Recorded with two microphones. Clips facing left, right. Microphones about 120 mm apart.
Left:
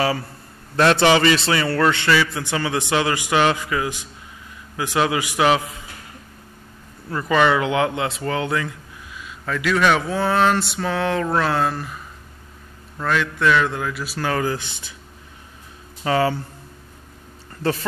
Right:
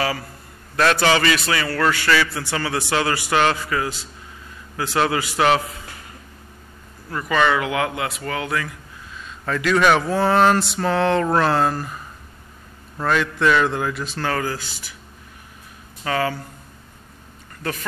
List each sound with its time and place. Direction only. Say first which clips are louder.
0.0 s a man's voice: left 2 dB; 25° left (ahead or behind)
7.1 s a man's voice: left 2 dB; 25° left (ahead or behind)
9.1 s speech: right 1 dB; 5° left (ahead or behind)
14.0 s a man's voice: left 1 dB; 10° left (ahead or behind)
16.0 s a man's voice: left 3 dB; 25° left (ahead or behind)
17.6 s speech: left 6 dB; 30° left (ahead or behind)